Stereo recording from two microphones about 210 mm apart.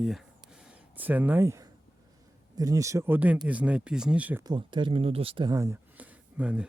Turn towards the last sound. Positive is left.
turn(degrees=-5)  # may be behind; listen again after turning